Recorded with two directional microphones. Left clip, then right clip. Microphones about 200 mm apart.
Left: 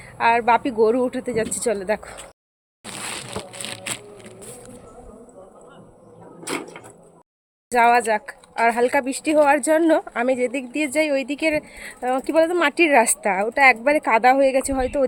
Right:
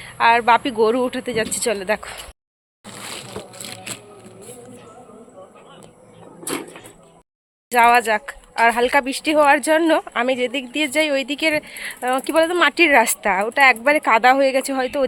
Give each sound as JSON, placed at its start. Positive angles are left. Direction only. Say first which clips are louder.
{"t": 0.0, "sound": "speech", "louder": "right 3 dB", "side_deg": 0}
{"t": 3.5, "sound": "a sound", "louder": "left 2 dB", "side_deg": 35}
{"t": 7.7, "sound": "speech", "louder": "right 2 dB", "side_deg": 5}